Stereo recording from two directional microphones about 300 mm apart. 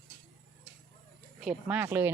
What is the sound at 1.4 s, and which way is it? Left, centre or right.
Speech, centre.